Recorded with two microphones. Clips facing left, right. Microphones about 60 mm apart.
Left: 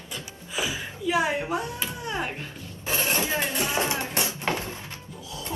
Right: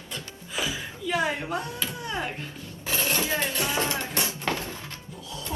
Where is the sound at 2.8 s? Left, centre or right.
Left.